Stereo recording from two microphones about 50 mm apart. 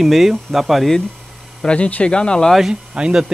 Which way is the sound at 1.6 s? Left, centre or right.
Left.